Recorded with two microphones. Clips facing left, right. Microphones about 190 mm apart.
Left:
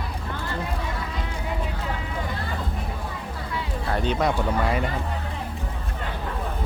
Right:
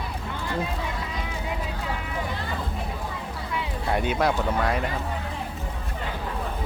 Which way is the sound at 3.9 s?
10° right (ahead or behind).